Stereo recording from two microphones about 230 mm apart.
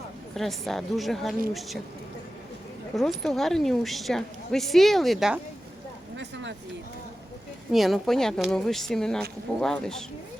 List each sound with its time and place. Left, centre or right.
0.3 s speech: centre
2.9 s speech: centre
6.1 s a sound: right
7.7 s speech: centre